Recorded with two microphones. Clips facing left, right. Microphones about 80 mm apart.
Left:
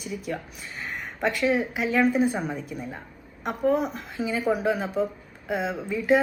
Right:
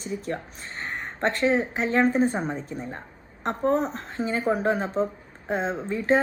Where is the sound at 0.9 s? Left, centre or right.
Right.